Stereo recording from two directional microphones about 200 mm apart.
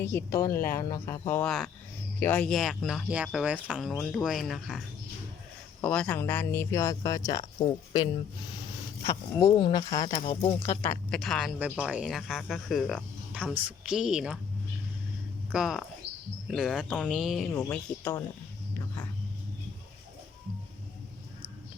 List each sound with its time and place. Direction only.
0.0 s speech: 10° left (ahead or behind)
5.8 s speech: 5° left (ahead or behind)
9.0 s speech: 20° left (ahead or behind)
10.8 s speech: 5° left (ahead or behind)
15.5 s speech: centre (ahead or behind)
17.5 s speech: 10° left (ahead or behind)